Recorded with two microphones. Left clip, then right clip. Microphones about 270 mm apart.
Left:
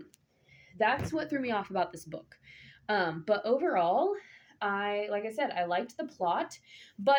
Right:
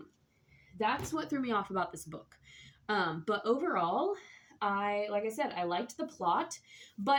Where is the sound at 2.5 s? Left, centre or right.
Centre.